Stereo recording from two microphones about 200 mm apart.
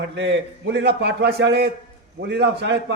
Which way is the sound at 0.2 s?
60° right (ahead or behind).